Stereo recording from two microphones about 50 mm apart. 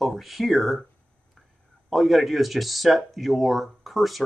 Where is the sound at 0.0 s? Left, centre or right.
Centre.